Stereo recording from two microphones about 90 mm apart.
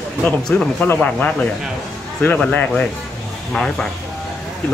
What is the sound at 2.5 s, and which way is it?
Speech, 20° left (ahead or behind).